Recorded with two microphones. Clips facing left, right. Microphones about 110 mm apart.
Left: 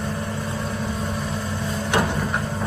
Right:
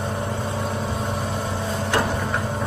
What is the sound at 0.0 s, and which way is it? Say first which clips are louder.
Vehicle: right 1 dB; 20° right (ahead or behind).